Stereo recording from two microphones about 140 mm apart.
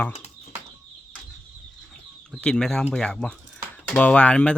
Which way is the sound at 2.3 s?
5° left (ahead or behind).